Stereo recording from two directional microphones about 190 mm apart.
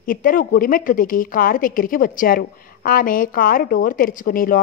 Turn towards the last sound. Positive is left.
turn(degrees=50)  # may be behind; listen again after turning